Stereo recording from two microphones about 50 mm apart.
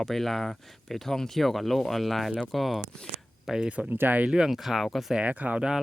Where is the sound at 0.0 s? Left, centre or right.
Centre.